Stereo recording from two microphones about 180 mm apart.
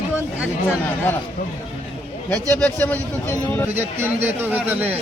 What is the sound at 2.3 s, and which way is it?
A man's voice, 10° left (ahead or behind).